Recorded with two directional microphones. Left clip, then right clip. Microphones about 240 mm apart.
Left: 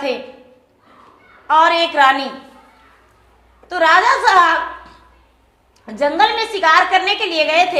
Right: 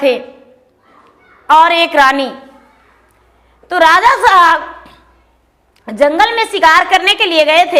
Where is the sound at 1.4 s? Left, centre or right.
Right.